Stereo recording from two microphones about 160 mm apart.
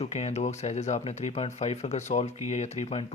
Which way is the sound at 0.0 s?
45° left (ahead or behind).